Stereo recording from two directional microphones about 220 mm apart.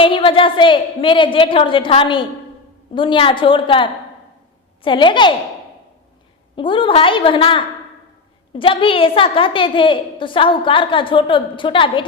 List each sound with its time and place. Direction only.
0.0 s a woman's voice: 25° left (ahead or behind)
6.6 s a woman's voice: 20° left (ahead or behind)